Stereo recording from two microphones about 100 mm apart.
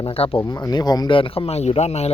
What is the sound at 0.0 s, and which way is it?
Speech, 70° left (ahead or behind).